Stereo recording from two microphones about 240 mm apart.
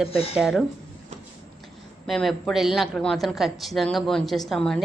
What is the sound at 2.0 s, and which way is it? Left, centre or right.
Speech, centre.